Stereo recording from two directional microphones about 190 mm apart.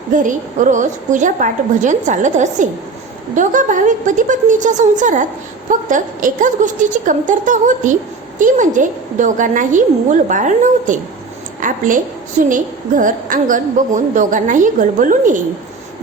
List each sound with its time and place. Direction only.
0.1 s a woman's voice: 40° right (ahead or behind)